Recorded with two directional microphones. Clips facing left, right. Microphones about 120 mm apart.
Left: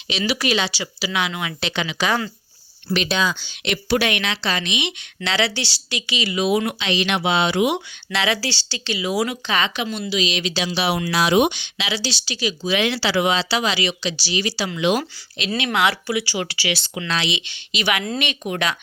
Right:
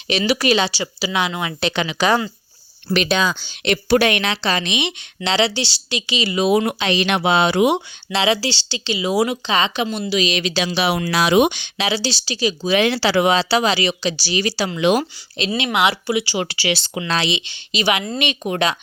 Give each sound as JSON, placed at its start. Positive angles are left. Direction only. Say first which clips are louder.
{"t": 0.3, "sound": "a woman's voice", "louder": "right 4 dB", "side_deg": -40}
{"t": 2.9, "sound": "a woman's voice", "louder": "right 3 dB", "side_deg": -55}
{"t": 10.1, "sound": "speech", "louder": "right 3 dB", "side_deg": -55}
{"t": 11.1, "sound": "speech", "louder": "right 2 dB", "side_deg": -90}
{"t": 11.9, "sound": "speech", "louder": "right 4 dB", "side_deg": -35}
{"t": 15.5, "sound": "a woman's voice", "louder": "right 1 dB", "side_deg": -20}